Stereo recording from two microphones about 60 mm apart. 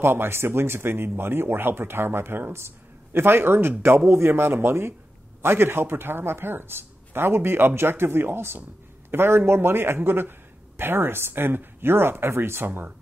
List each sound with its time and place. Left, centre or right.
0.0 s speech: right